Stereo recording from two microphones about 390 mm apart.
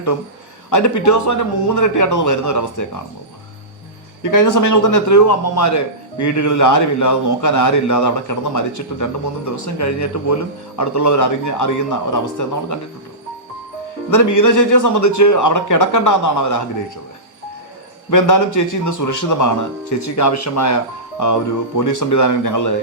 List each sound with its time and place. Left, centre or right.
0.7 s a man's voice: left
4.2 s a man's voice: left
14.1 s a man's voice: left
18.1 s a man's voice: left